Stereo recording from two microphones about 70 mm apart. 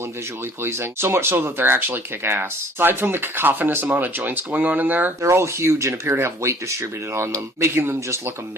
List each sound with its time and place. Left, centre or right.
0.6 s speech: right
5.2 s speech: right